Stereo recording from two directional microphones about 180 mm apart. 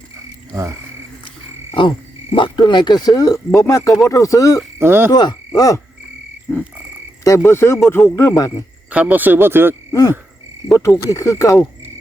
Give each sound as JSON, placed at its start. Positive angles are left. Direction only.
{"t": 2.3, "sound": "speech", "side_deg": 25}
{"t": 4.8, "sound": "speech", "side_deg": -10}
{"t": 5.1, "sound": "speech", "side_deg": 25}
{"t": 6.5, "sound": "frog", "side_deg": 0}
{"t": 7.3, "sound": "speech", "side_deg": 15}
{"t": 8.9, "sound": "speech", "side_deg": -10}
{"t": 9.9, "sound": "speech", "side_deg": 20}